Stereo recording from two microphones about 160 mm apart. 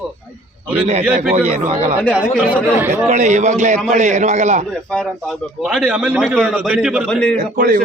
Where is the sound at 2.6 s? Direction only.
15° right (ahead or behind).